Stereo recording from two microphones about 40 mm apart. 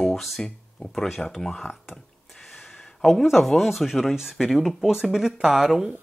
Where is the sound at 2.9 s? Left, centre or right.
Centre.